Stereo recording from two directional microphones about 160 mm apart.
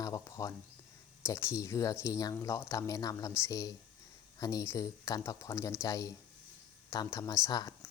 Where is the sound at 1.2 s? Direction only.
15° left (ahead or behind).